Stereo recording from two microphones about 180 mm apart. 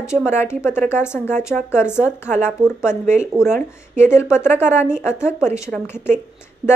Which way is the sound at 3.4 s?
40° right (ahead or behind).